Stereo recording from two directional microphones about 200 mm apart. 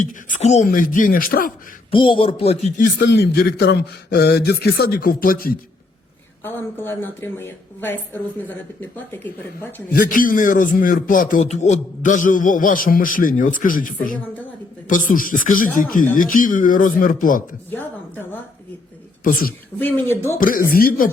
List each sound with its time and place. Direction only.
0.0 s a man's voice: 40° left (ahead or behind)
1.9 s speech: 25° left (ahead or behind)
3.0 s a man's voice: 60° left (ahead or behind)
6.4 s speech: 10° left (ahead or behind)
9.9 s a man's voice: 45° left (ahead or behind)
17.7 s speech: 10° left (ahead or behind)
19.2 s a man's voice: 45° left (ahead or behind)